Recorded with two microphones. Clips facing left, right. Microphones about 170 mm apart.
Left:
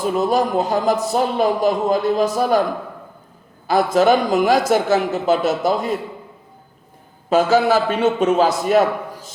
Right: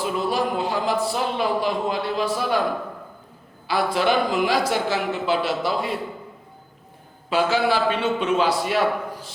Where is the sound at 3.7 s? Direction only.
45° left (ahead or behind).